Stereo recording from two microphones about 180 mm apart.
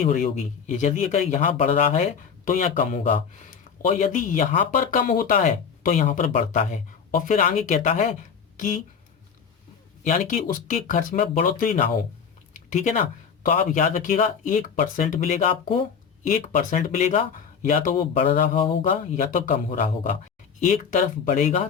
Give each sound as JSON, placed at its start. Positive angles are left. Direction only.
{"t": 0.0, "sound": "speech", "side_deg": 45}
{"t": 10.0, "sound": "speech", "side_deg": 45}
{"t": 18.3, "sound": "speech", "side_deg": 50}